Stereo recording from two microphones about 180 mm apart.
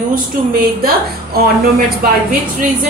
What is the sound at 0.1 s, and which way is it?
A woman's voice, 50° right (ahead or behind).